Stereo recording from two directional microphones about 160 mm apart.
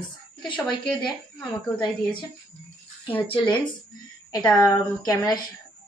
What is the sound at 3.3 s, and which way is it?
Speech, 30° left (ahead or behind).